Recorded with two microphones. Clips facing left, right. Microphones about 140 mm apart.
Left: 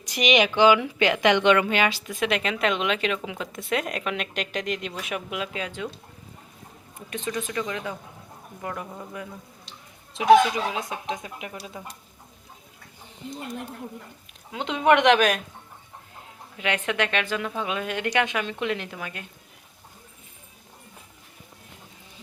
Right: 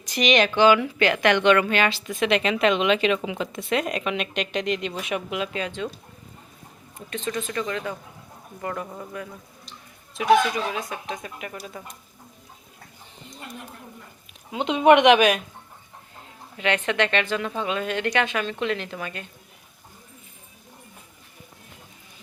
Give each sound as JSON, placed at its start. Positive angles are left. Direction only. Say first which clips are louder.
{"t": 0.1, "sound": "a woman's voice", "louder": "right 1 dB", "side_deg": 10}
{"t": 7.1, "sound": "a woman's voice", "louder": "right 1 dB", "side_deg": 15}
{"t": 10.7, "sound": "a woman's voice", "louder": "even", "side_deg": 20}
{"t": 14.5, "sound": "speech", "louder": "right 4 dB", "side_deg": -20}
{"t": 16.6, "sound": "a woman's voice", "louder": "right 3 dB", "side_deg": 10}